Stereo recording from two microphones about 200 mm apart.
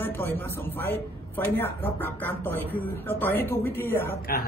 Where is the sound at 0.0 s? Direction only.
10° left (ahead or behind).